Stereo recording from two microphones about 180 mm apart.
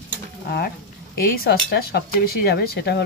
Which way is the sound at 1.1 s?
55° left (ahead or behind).